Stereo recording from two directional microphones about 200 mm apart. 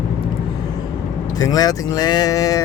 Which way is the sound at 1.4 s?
20° left (ahead or behind).